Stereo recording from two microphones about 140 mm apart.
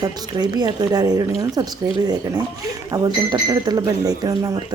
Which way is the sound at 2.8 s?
25° right (ahead or behind).